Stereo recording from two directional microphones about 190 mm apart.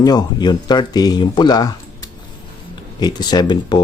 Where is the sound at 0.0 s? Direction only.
20° left (ahead or behind).